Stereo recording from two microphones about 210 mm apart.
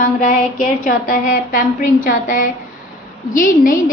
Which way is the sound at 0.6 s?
35° left (ahead or behind).